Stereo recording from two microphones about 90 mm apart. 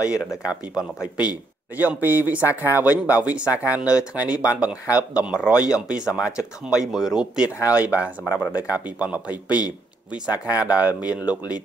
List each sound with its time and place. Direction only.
0.0 s a man's voice: 10° right (ahead or behind)